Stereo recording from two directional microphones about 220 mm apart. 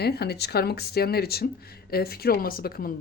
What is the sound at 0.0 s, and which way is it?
Speech, 45° left (ahead or behind).